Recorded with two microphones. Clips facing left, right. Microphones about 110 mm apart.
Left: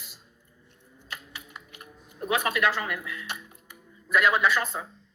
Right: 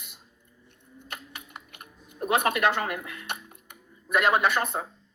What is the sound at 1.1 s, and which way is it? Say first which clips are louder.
Typing: even; 55° right (ahead or behind).